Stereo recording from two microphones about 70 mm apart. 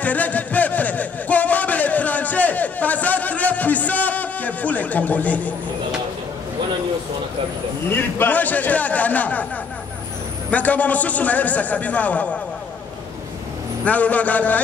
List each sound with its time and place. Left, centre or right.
0.0 s a sound: left
7.9 s a man's voice: left
10.5 s a man's voice: left
13.8 s a man's voice: left